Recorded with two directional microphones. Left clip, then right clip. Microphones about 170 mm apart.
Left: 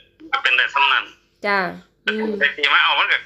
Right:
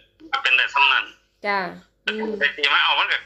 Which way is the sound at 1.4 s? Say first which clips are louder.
Left 4 dB; 30° left (ahead or behind).